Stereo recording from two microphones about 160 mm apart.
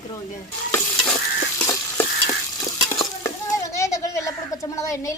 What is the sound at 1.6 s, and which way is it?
Stir, 15° left (ahead or behind).